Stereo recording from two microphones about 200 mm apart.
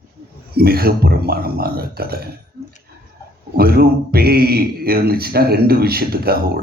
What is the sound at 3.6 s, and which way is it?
Speech, 50° right (ahead or behind).